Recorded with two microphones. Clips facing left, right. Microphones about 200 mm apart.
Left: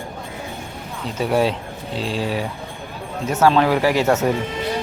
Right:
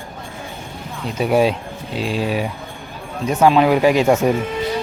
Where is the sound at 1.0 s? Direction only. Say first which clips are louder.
Right 3 dB; 15° right (ahead or behind).